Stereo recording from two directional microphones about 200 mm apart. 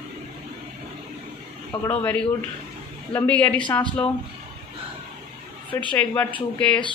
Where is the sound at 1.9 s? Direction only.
10° left (ahead or behind).